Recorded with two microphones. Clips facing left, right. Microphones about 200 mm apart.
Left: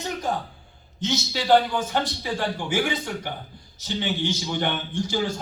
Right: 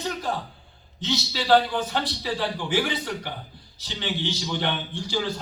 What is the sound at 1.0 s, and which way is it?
A man's voice, 45° left (ahead or behind).